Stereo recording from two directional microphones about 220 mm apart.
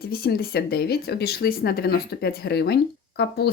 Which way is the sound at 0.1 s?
45° left (ahead or behind).